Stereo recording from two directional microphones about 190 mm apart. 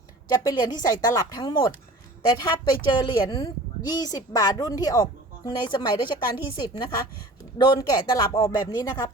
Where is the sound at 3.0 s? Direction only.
20° left (ahead or behind).